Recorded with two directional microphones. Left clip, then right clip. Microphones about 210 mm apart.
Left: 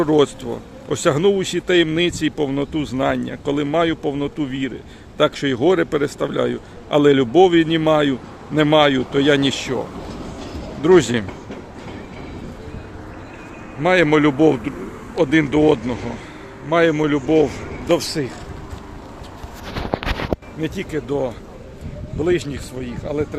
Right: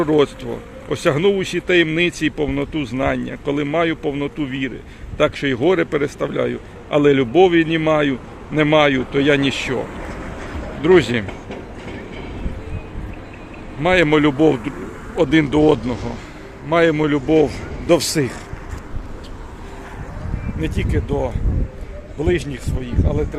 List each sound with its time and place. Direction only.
0.0 s a man's voice: 5° left (ahead or behind)
10.8 s a man's voice: 10° left (ahead or behind)
13.8 s speech: centre (ahead or behind)
18.1 s speech: 35° right (ahead or behind)
20.6 s speech: centre (ahead or behind)